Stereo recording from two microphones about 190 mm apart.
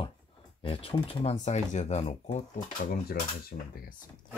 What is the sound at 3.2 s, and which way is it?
Speech, 55° left (ahead or behind).